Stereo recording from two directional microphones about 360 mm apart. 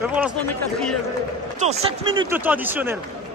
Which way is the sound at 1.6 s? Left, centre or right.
Centre.